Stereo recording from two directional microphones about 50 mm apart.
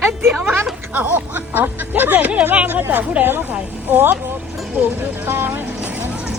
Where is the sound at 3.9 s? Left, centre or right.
Right.